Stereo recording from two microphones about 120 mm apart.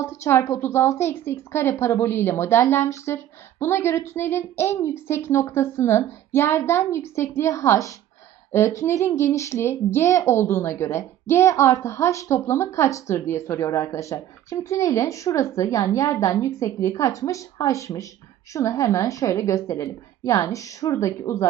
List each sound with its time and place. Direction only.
0.0 s speech: 20° left (ahead or behind)